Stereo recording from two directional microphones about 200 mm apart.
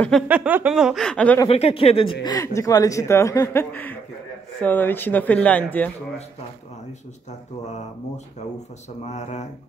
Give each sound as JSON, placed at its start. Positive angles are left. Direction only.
{"t": 0.3, "sound": "speech", "side_deg": -10}
{"t": 1.5, "sound": "speech", "side_deg": 30}
{"t": 2.2, "sound": "speech", "side_deg": 15}
{"t": 9.0, "sound": "speech", "side_deg": 35}